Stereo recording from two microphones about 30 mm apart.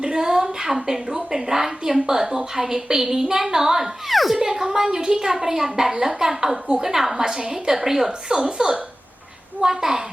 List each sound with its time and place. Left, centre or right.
0.0 s a woman's voice: right
4.1 s a woman's voice: centre
4.4 s a woman's voice: centre
8.4 s a woman's voice: right